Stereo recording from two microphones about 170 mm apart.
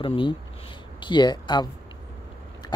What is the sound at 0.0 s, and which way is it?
Speech, 30° left (ahead or behind).